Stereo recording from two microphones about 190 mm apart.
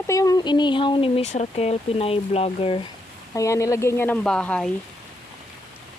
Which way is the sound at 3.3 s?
15° left (ahead or behind).